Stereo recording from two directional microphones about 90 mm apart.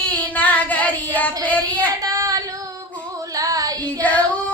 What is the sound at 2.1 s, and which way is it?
Child singing, 40° right (ahead or behind).